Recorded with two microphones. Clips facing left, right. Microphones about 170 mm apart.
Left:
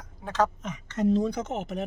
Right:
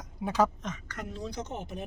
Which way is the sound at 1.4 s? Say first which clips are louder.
Left 6 dB; 90° left.